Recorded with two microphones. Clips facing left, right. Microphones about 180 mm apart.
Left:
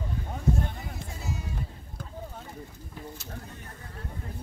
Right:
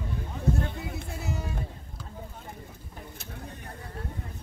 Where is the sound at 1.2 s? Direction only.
65° right (ahead or behind).